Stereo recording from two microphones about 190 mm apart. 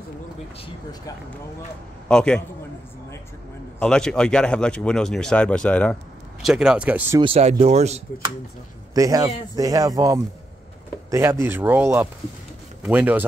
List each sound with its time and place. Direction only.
2.0 s speech: 5° left (ahead or behind)
3.8 s speech: 5° left (ahead or behind)
7.2 s speech: 30° right (ahead or behind)
8.9 s speech: 20° right (ahead or behind)